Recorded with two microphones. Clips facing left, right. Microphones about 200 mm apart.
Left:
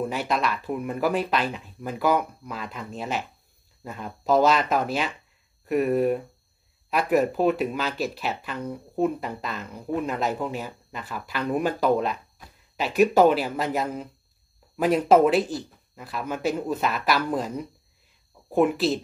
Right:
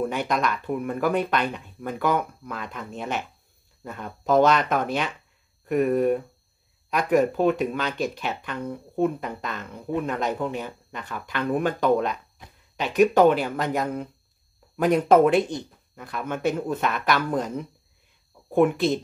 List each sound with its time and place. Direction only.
0.0 s speech: 5° left (ahead or behind)
12.4 s a sound: 20° right (ahead or behind)
12.7 s speech: 5° left (ahead or behind)
18.5 s speech: centre (ahead or behind)